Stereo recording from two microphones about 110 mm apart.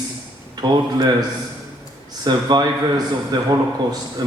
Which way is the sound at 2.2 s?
40° right (ahead or behind).